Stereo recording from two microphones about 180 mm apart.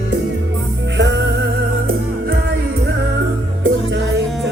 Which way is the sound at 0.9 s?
70° right (ahead or behind).